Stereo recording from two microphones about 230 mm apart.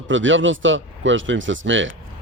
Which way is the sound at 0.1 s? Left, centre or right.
Right.